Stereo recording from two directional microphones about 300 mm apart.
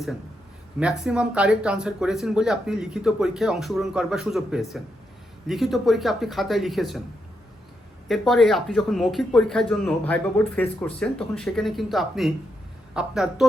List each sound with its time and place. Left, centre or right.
0.8 s speech: centre
8.0 s speech: centre